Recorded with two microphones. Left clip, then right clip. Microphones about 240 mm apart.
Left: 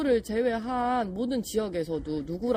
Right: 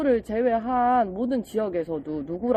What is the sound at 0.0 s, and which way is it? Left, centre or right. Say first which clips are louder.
Speech: right 3 dB; left.